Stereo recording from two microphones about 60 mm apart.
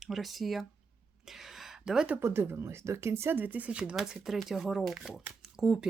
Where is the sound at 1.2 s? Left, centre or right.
Centre.